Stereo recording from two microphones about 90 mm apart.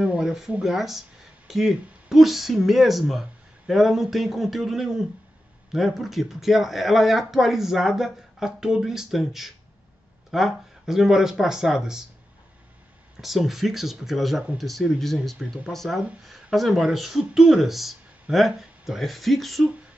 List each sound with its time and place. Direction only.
0.0 s speech: 10° right (ahead or behind)
13.2 s speech: centre (ahead or behind)
15.3 s speech: 10° right (ahead or behind)
15.7 s speech: 5° left (ahead or behind)